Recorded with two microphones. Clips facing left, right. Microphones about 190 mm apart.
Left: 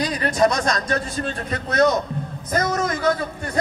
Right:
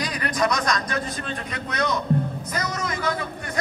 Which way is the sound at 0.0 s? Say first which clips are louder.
Left 5 dB; 30° left (ahead or behind).